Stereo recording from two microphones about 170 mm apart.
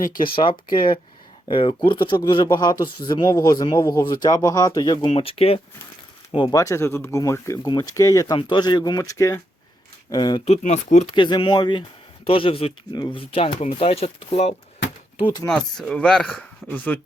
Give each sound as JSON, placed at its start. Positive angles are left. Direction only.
{"t": 0.1, "sound": "speech", "side_deg": 55}
{"t": 0.3, "sound": "speech", "side_deg": 30}
{"t": 5.0, "sound": "speech", "side_deg": 35}
{"t": 6.3, "sound": "speech", "side_deg": 25}
{"t": 10.4, "sound": "speech", "side_deg": 40}
{"t": 11.1, "sound": "speech", "side_deg": 30}
{"t": 15.2, "sound": "speech", "side_deg": 25}
{"t": 15.4, "sound": "speech", "side_deg": 5}